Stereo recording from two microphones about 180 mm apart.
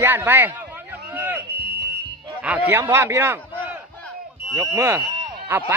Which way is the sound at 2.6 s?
15° right (ahead or behind).